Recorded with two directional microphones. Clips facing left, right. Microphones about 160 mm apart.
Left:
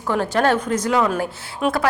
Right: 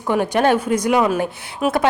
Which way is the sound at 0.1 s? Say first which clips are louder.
Right 2 dB; 15° right (ahead or behind).